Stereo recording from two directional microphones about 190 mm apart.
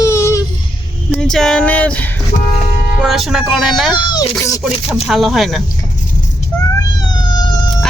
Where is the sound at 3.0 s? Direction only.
Centre (ahead or behind).